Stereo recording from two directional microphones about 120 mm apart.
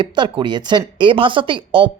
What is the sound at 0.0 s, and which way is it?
Speech, 40° right (ahead or behind).